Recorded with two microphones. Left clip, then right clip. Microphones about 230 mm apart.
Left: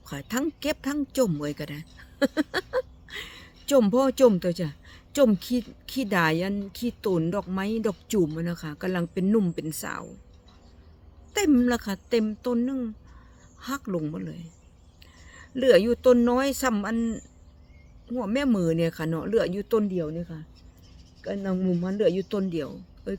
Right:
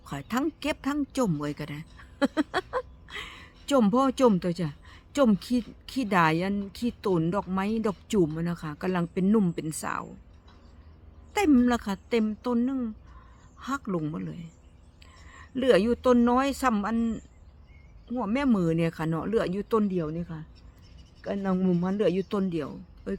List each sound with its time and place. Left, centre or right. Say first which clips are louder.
0.0 s a woman's voice: even; centre
11.3 s a woman's voice: even; centre